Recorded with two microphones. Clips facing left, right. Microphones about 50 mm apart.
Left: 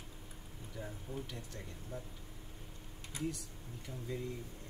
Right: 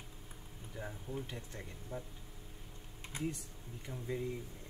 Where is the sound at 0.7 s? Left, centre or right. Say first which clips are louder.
Right 1 dB; centre.